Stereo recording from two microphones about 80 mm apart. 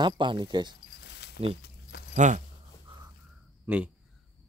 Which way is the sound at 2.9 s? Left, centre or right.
Right.